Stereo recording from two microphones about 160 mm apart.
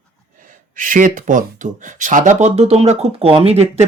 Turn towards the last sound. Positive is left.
turn(degrees=-40)  # may be behind; listen again after turning